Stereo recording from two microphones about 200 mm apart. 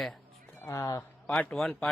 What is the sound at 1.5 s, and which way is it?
Speech, 5° left (ahead or behind).